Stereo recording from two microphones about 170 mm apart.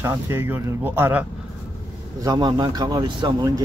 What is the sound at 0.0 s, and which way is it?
Speech, 15° right (ahead or behind).